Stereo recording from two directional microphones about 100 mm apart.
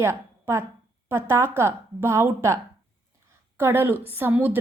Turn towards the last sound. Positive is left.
turn(degrees=-20)  # may be behind; listen again after turning